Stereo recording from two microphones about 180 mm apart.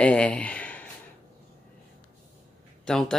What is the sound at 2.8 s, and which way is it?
Speech, 5° left (ahead or behind).